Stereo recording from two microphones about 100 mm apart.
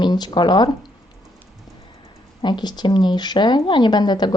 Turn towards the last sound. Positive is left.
turn(degrees=45)  # may be behind; listen again after turning